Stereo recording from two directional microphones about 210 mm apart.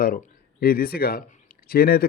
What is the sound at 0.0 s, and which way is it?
Speech, 40° left (ahead or behind).